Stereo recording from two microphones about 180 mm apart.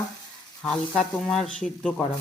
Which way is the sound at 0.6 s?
5° left (ahead or behind).